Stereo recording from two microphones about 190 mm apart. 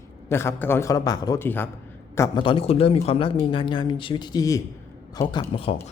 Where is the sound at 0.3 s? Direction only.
15° left (ahead or behind).